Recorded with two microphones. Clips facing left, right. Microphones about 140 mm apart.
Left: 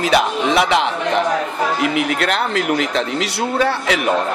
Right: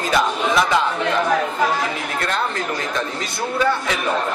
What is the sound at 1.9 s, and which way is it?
Speech, 80° left.